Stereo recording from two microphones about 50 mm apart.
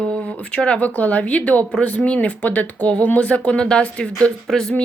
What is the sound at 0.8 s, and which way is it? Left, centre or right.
A woman's voice, left.